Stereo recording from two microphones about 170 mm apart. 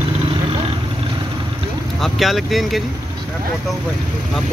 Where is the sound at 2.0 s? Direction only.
Centre (ahead or behind).